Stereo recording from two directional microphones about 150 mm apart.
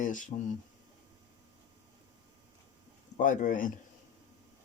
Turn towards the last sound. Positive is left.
turn(degrees=65)  # may be behind; listen again after turning